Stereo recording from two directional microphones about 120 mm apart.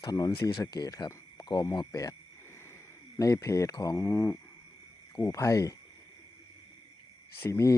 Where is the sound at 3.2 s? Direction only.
30° left (ahead or behind).